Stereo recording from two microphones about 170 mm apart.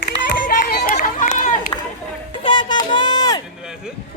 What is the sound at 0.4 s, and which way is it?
Run, 55° left (ahead or behind).